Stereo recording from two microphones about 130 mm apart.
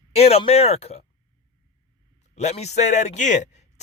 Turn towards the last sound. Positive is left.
turn(degrees=65)  # may be behind; listen again after turning